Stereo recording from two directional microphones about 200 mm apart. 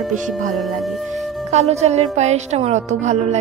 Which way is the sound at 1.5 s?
35° right (ahead or behind).